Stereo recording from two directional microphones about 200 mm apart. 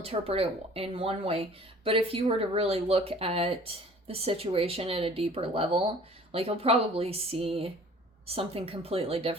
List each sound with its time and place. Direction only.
0.0 s a woman's voice: 30° right (ahead or behind)